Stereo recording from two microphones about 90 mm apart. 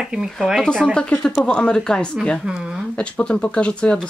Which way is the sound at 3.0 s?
10° left (ahead or behind).